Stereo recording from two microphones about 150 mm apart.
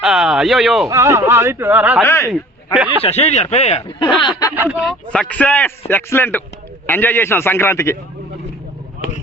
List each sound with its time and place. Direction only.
0.0 s speech: centre (ahead or behind)
0.9 s speech: 20° right (ahead or behind)
2.0 s speech: 20° left (ahead or behind)
3.0 s speech: 45° left (ahead or behind)
4.2 s speech: 30° left (ahead or behind)
4.5 s speech: 10° right (ahead or behind)
5.0 s a man's voice: 5° left (ahead or behind)